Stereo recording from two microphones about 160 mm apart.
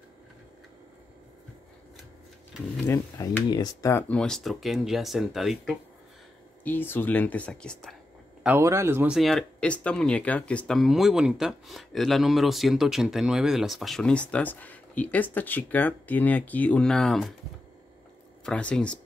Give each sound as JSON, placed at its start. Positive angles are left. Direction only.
{"t": 2.9, "sound": "speech", "side_deg": 20}
{"t": 4.2, "sound": "speech", "side_deg": 5}
{"t": 6.6, "sound": "speech", "side_deg": 10}
{"t": 8.5, "sound": "speech", "side_deg": -15}
{"t": 9.1, "sound": "speech", "side_deg": 0}
{"t": 18.4, "sound": "speech", "side_deg": 5}